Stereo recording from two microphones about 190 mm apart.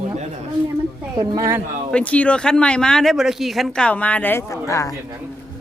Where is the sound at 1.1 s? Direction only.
20° right (ahead or behind).